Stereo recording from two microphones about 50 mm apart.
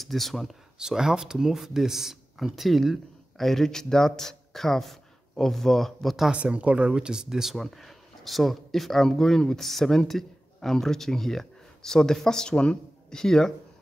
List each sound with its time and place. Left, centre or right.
0.0 s speech: centre
0.7 s speech: centre
6.3 s speech: right
7.5 s speech: centre